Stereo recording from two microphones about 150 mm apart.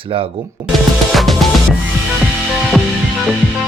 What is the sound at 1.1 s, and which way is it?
Music, centre (ahead or behind).